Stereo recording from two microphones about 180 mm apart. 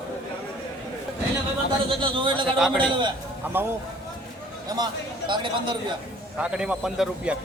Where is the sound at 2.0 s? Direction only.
25° right (ahead or behind).